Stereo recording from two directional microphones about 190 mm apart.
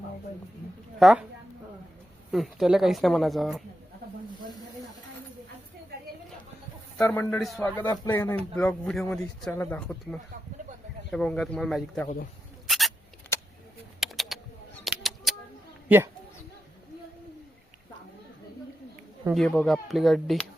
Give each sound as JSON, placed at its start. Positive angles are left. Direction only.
{"t": 0.9, "sound": "speech", "side_deg": 0}
{"t": 2.3, "sound": "speech", "side_deg": 0}
{"t": 7.0, "sound": "speech", "side_deg": 10}
{"t": 12.6, "sound": "rodents", "side_deg": 0}
{"t": 14.0, "sound": "typing", "side_deg": 0}
{"t": 14.8, "sound": "a sound", "side_deg": 0}
{"t": 19.3, "sound": "speech", "side_deg": 5}